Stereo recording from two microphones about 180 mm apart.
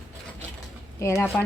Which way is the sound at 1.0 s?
15° left (ahead or behind).